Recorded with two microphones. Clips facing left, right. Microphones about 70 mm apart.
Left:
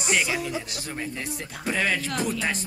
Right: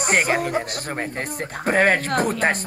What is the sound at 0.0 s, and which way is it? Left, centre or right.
Speech, right.